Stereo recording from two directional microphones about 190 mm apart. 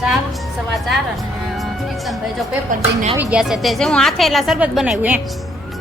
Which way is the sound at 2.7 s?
35° right (ahead or behind).